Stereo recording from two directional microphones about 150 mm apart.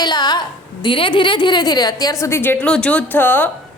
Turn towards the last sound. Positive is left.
turn(degrees=10)  # may be behind; listen again after turning